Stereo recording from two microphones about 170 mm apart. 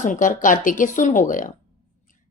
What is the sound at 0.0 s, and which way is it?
A woman's voice, 50° left (ahead or behind).